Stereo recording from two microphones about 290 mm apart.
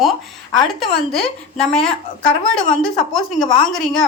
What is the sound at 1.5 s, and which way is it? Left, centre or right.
Speech, centre.